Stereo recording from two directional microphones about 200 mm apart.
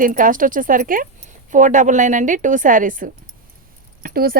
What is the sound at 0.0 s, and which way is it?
A woman's voice, 40° right (ahead or behind).